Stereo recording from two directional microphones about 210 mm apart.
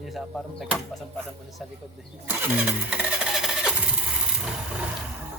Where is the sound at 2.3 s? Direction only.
5° right (ahead or behind).